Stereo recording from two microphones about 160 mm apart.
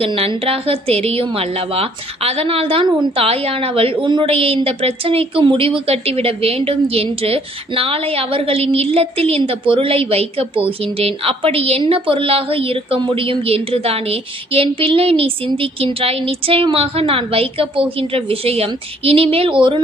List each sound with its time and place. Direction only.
0.0 s a woman's voice: 35° right (ahead or behind)